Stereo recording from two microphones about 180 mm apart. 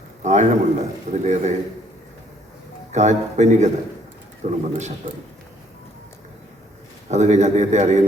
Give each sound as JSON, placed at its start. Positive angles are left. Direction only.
{"t": 0.2, "sound": "a man's voice", "side_deg": -40}
{"t": 2.9, "sound": "a man's voice", "side_deg": -40}
{"t": 7.1, "sound": "a man's voice", "side_deg": -40}